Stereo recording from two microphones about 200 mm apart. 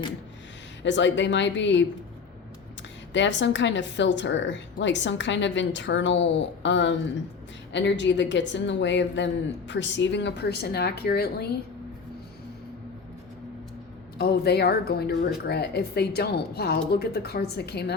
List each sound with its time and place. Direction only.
0.8 s speech: 65° left (ahead or behind)
3.1 s speech: 65° left (ahead or behind)
14.2 s speech: 55° left (ahead or behind)